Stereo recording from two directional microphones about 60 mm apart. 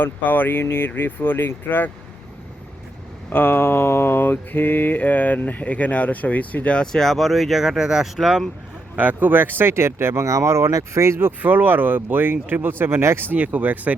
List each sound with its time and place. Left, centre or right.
0.0 s speech: left
3.2 s mantra: left
6.8 s speech: centre
9.0 s speech: right
13.3 s speech: right